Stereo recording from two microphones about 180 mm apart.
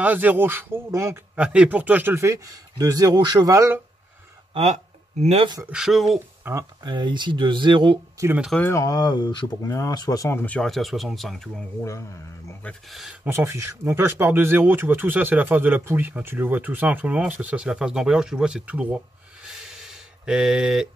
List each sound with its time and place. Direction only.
0.0 s speech: 10° right (ahead or behind)
4.6 s speech: 35° right (ahead or behind)
5.7 s speech: centre (ahead or behind)
6.4 s speech: 20° right (ahead or behind)
8.5 s speech: 10° left (ahead or behind)
12.6 s speech: centre (ahead or behind)
19.4 s a sound: 5° right (ahead or behind)